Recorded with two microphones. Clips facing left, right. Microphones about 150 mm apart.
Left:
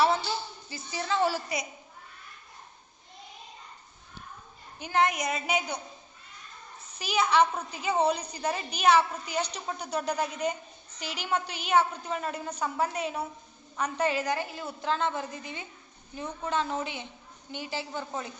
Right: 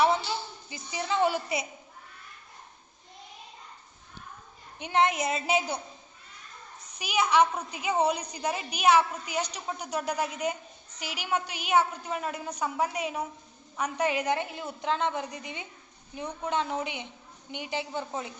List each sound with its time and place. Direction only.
0.7 s a woman's voice: 15° right (ahead or behind)
4.8 s a woman's voice: 25° right (ahead or behind)
7.0 s a woman's voice: 10° right (ahead or behind)